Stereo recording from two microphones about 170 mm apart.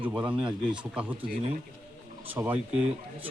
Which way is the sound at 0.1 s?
10° right (ahead or behind).